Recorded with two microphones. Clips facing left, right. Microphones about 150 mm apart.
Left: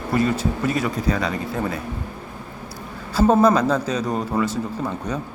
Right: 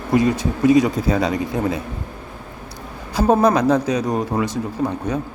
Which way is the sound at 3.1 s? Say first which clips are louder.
Even; 15° right (ahead or behind).